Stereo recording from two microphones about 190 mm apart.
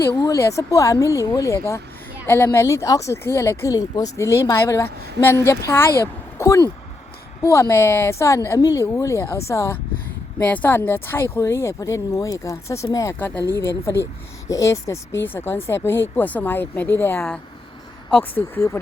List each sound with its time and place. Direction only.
0.0 s speech: 15° left (ahead or behind)